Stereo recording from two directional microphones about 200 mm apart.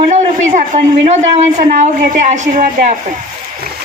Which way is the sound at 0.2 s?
35° right (ahead or behind).